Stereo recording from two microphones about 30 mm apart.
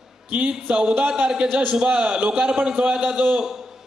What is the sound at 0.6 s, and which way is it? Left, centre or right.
Speech, right.